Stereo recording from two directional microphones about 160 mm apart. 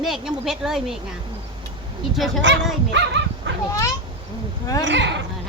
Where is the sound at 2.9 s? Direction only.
90° right.